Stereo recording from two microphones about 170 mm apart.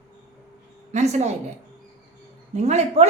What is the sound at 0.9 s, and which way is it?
Speech, 40° right (ahead or behind).